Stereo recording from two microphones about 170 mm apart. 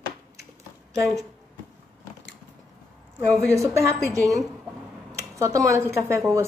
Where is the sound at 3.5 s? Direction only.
15° right (ahead or behind).